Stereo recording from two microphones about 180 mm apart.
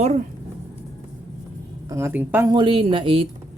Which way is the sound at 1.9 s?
15° right (ahead or behind).